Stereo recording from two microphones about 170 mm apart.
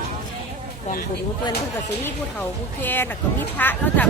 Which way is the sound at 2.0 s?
10° left (ahead or behind).